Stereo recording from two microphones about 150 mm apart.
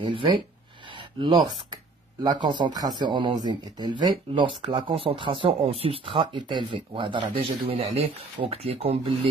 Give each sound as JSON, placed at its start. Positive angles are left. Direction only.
{"t": 0.0, "sound": "speech", "side_deg": -35}